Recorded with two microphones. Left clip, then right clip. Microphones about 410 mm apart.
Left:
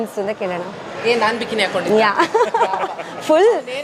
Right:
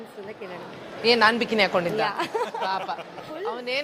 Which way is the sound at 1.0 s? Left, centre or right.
Right.